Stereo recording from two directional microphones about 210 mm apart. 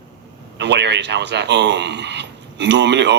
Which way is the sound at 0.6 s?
55° right (ahead or behind).